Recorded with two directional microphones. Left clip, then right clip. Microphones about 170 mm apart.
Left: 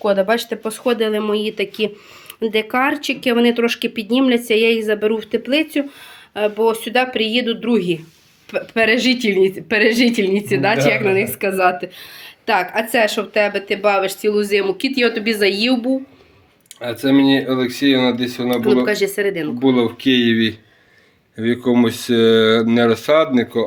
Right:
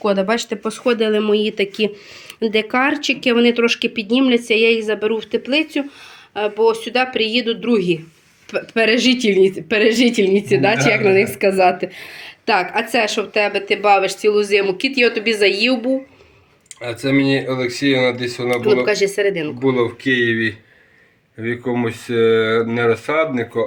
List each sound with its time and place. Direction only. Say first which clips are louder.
0.0 s speech: left 2 dB; 5° right (ahead or behind)
16.8 s speech: left 2 dB; 50° left (ahead or behind)
18.5 s speech: right 1 dB; 5° left (ahead or behind)
19.6 s speech: left 1 dB; 60° left (ahead or behind); by 20.5 s 75° left (ahead or behind)
21.3 s speech: left 4 dB; 90° left